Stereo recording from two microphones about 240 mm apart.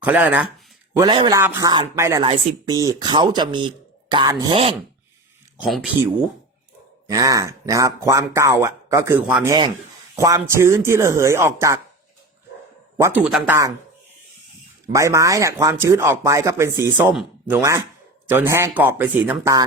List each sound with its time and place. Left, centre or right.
0.0 s speech: centre
0.9 s speech: centre
5.5 s speech: centre
7.1 s speech: centre
13.0 s speech: centre
14.8 s speech: centre